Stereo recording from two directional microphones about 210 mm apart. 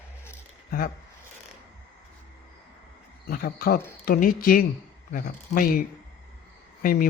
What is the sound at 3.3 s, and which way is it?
Speech, 45° left (ahead or behind).